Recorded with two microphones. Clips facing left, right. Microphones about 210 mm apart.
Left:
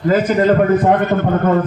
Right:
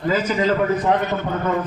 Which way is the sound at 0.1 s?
55° left (ahead or behind).